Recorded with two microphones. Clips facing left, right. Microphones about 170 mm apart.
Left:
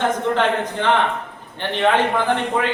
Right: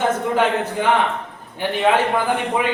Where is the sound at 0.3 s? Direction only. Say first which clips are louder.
Right 1 dB; 10° right (ahead or behind).